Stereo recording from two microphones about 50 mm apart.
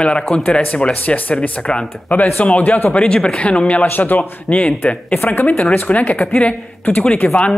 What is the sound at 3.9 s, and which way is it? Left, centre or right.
Speech, left.